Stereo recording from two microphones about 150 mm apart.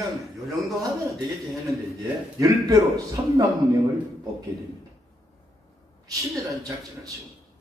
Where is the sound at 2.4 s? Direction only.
20° right (ahead or behind).